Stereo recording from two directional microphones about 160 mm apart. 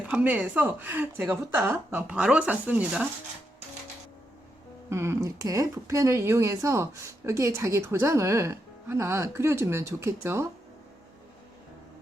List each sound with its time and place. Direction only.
0.1 s speech: 10° right (ahead or behind)
4.9 s speech: 15° right (ahead or behind)